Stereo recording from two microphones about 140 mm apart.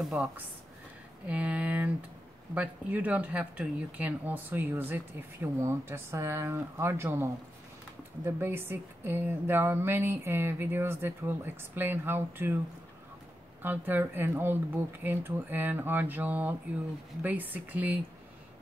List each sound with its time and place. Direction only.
0.0 s speech: 5° right (ahead or behind)
8.4 s speech: 15° right (ahead or behind)
13.6 s speech: 15° right (ahead or behind)